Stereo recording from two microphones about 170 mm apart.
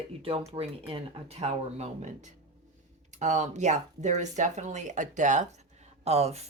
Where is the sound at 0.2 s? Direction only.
35° right (ahead or behind).